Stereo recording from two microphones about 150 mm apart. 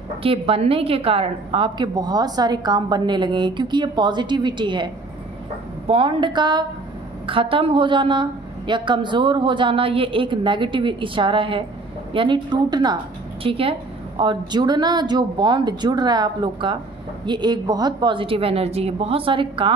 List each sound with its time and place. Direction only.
0.2 s a woman's voice: 40° right (ahead or behind)
13.4 s a woman's voice: 40° right (ahead or behind)